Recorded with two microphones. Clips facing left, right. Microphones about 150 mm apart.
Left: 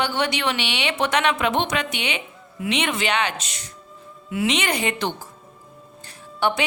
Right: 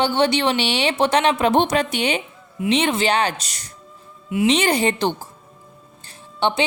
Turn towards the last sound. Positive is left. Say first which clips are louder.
# right 1 dB
turn(degrees=-25)  # may be behind; listen again after turning